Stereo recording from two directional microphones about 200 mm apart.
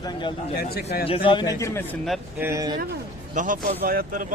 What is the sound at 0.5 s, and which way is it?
Speech, 50° left (ahead or behind).